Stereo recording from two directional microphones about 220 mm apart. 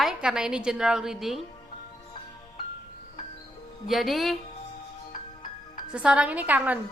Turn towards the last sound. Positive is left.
turn(degrees=-5)  # may be behind; listen again after turning